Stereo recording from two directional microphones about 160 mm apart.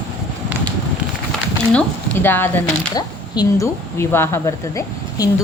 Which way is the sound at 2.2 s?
10° left (ahead or behind).